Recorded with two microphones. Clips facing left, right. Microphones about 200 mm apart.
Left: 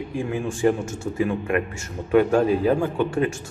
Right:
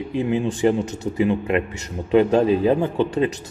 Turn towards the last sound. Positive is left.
turn(degrees=-20)  # may be behind; listen again after turning